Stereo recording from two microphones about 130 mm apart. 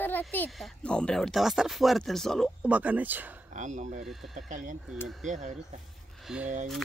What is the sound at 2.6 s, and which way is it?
Speech, 10° right (ahead or behind).